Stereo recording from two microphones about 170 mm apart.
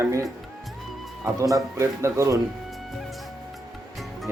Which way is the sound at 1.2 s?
20° right (ahead or behind).